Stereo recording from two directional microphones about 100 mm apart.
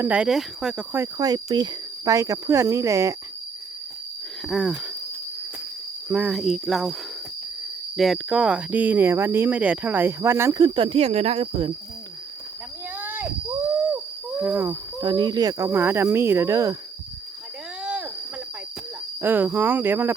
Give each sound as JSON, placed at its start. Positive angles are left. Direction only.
{"t": 0.0, "sound": "speech", "side_deg": -10}
{"t": 1.2, "sound": "speech", "side_deg": -40}
{"t": 4.4, "sound": "speech", "side_deg": -5}
{"t": 6.1, "sound": "speech", "side_deg": -10}
{"t": 7.9, "sound": "speech", "side_deg": 0}
{"t": 10.5, "sound": "speech", "side_deg": -45}
{"t": 10.8, "sound": "speech", "side_deg": -75}
{"t": 13.0, "sound": "cricket", "side_deg": -20}
{"t": 13.9, "sound": "hoot", "side_deg": -20}
{"t": 15.0, "sound": "speech", "side_deg": -45}
{"t": 15.7, "sound": "speech", "side_deg": -25}
{"t": 17.8, "sound": "cricket", "side_deg": -10}
{"t": 19.2, "sound": "speech", "side_deg": -20}